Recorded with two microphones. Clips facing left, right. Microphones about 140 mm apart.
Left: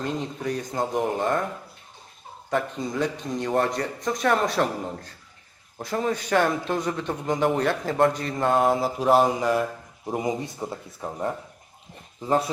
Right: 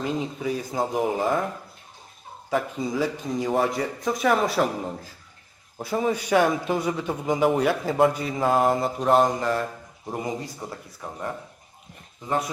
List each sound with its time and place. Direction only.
0.0 s a man's voice: 5° right (ahead or behind)
2.5 s a man's voice: centre (ahead or behind)
10.2 s speech: 20° left (ahead or behind)